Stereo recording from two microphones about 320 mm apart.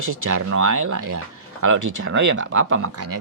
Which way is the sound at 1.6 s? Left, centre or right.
Right.